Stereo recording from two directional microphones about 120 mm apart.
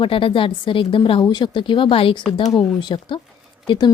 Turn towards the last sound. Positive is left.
turn(degrees=40)  # may be behind; listen again after turning